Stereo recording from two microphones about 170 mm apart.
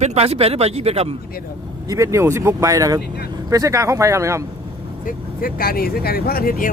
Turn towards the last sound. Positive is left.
turn(degrees=60)  # may be behind; listen again after turning